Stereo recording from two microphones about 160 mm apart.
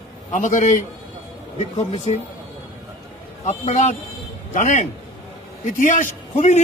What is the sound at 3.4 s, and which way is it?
A man's voice, 45° left (ahead or behind).